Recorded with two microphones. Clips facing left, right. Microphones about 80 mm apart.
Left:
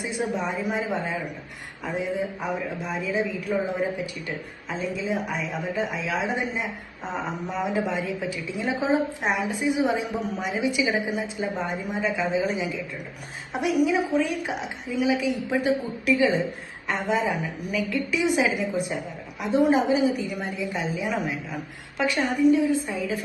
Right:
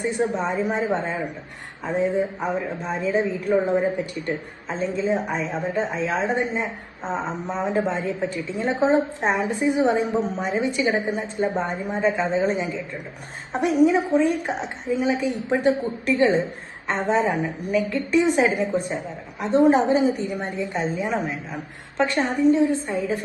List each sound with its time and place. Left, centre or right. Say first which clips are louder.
0.1 s a woman's voice: right 4 dB; right
10.6 s a woman's voice: right 1 dB; right